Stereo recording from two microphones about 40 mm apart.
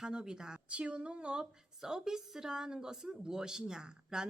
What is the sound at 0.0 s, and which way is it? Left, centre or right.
Speech, right.